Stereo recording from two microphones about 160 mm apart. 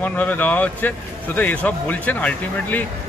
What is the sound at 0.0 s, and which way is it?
Speech, 10° left (ahead or behind).